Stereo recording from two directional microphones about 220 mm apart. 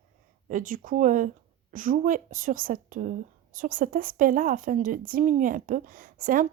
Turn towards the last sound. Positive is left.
turn(degrees=-40)  # may be behind; listen again after turning